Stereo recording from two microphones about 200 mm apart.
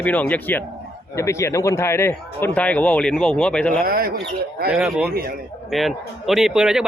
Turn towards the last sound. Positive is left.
turn(degrees=-5)  # may be behind; listen again after turning